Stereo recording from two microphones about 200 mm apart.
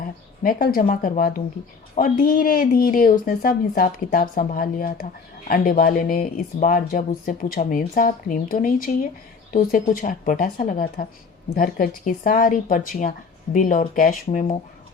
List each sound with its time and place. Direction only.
0.0 s speech: 45° left (ahead or behind)